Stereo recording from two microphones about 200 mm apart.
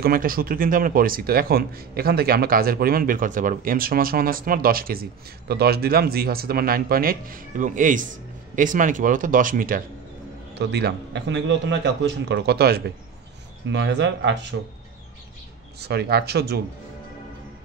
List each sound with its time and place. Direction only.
0.0 s speech: 45° right (ahead or behind)
10.6 s a man's voice: 55° right (ahead or behind)
15.8 s speech: 55° right (ahead or behind)